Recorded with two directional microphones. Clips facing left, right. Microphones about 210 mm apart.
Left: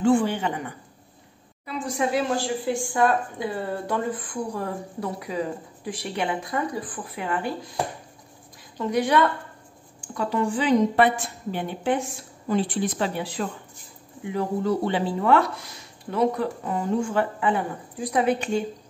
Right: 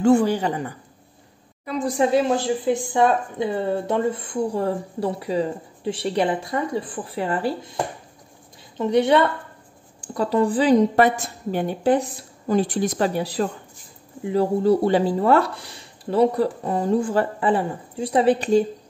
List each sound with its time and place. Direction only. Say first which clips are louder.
0.0 s a woman's voice: right 4 dB; 40° right (ahead or behind)
8.7 s a woman's voice: right 4 dB; 25° right (ahead or behind)